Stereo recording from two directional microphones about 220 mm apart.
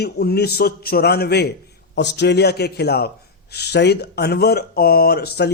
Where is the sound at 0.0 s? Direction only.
45° left (ahead or behind).